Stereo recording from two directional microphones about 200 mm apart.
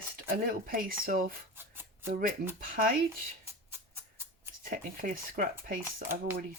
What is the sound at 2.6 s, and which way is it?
Speech, 45° right (ahead or behind).